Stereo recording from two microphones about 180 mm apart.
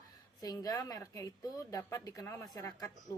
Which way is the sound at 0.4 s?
20° left (ahead or behind).